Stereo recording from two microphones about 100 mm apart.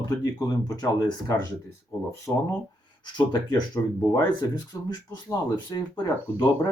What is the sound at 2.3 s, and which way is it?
Speech, 10° left (ahead or behind).